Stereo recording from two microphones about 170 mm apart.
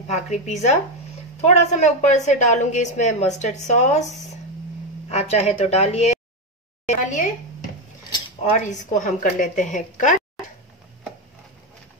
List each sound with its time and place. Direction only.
0.0 s a woman's voice: 40° left (ahead or behind)
5.1 s a woman's voice: 40° left (ahead or behind)
8.5 s a woman's voice: 45° left (ahead or behind)